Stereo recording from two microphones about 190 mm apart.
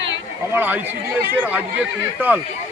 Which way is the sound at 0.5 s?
10° right (ahead or behind).